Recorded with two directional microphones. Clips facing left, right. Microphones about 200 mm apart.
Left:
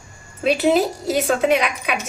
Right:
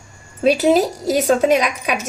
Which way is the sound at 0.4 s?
40° right (ahead or behind).